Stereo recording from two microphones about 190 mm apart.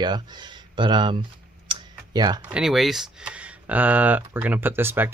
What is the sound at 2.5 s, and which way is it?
Speech, 5° right (ahead or behind).